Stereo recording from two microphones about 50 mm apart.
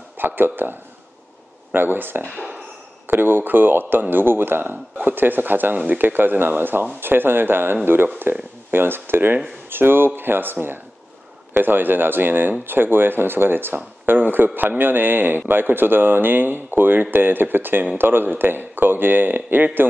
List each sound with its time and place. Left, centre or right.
0.2 s speech: right
2.3 s a sound: centre
3.1 s a man's voice: right